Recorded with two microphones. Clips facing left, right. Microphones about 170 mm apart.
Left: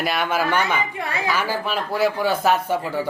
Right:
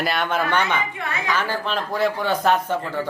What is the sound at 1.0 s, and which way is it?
Speech, 35° left (ahead or behind).